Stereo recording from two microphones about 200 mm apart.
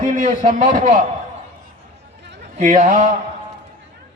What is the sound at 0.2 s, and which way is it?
Speech, 40° right (ahead or behind).